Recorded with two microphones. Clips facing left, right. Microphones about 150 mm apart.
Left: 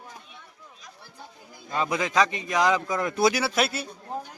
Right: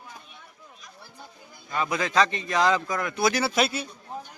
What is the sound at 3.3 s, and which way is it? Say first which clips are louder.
Speech: right 1 dB; 5° left (ahead or behind).